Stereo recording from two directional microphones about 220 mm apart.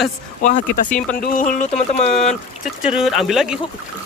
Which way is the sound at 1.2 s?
35° left (ahead or behind).